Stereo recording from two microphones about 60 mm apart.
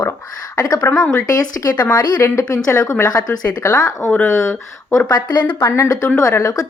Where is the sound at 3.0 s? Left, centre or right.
Left.